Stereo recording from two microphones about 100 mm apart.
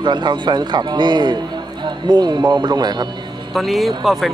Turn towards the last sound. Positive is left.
turn(degrees=0)  # may be behind; listen again after turning